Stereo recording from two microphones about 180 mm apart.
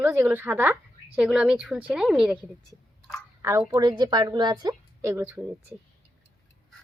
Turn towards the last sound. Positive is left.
turn(degrees=-10)  # may be behind; listen again after turning